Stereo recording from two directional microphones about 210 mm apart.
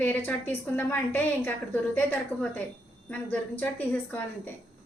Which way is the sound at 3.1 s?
10° left (ahead or behind).